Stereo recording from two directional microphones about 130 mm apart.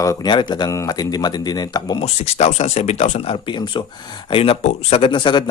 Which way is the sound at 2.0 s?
55° left (ahead or behind).